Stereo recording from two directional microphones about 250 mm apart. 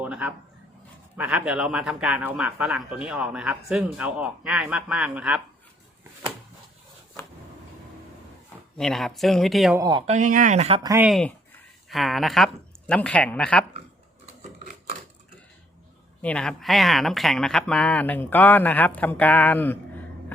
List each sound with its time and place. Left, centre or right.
0.0 s a sound: centre
1.1 s speech: centre
8.8 s speech: centre
9.8 s speech: centre
10.2 s speech: right
10.8 s speech: centre
16.2 s speech: centre